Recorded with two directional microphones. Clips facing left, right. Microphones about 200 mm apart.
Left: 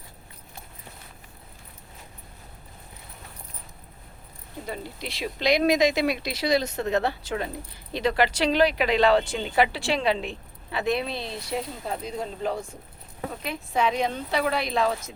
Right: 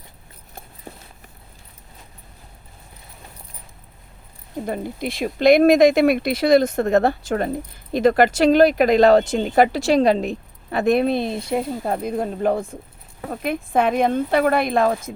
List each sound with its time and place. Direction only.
0.9 s clip-clop: 40° right (ahead or behind)
4.6 s speech: 50° right (ahead or behind)